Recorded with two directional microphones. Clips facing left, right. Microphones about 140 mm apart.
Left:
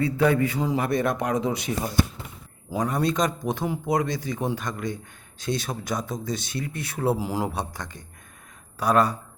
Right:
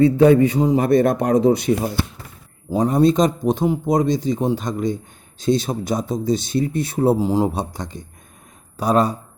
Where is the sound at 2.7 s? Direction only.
25° right (ahead or behind).